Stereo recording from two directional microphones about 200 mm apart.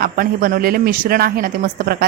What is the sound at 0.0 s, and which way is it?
A woman's voice, 45° right (ahead or behind).